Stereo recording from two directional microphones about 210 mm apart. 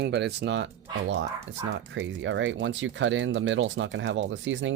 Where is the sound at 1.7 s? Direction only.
60° right (ahead or behind).